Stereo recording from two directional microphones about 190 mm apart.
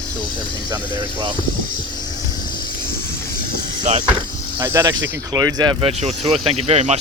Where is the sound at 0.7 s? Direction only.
25° right (ahead or behind).